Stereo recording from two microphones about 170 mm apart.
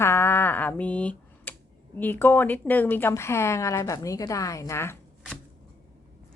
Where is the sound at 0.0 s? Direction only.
15° left (ahead or behind).